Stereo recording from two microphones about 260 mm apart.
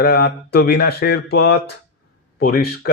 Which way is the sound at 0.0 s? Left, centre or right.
Left.